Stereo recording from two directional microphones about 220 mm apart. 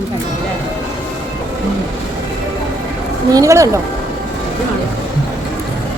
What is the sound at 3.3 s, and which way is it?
Speech, 15° right (ahead or behind).